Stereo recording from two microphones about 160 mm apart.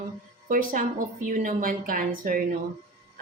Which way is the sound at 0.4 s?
60° right (ahead or behind).